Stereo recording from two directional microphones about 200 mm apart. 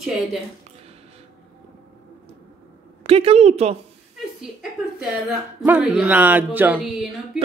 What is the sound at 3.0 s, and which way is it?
Speech, 30° right (ahead or behind).